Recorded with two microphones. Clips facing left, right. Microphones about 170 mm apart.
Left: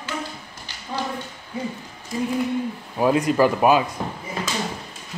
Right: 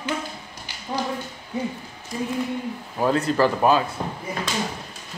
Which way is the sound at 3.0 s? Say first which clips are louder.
Left 2 dB; 10° left (ahead or behind).